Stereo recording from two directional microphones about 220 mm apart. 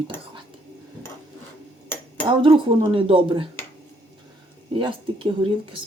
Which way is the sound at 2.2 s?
20° right (ahead or behind).